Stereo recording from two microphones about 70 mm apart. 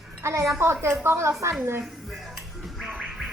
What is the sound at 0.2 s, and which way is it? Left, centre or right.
A woman's voice, right.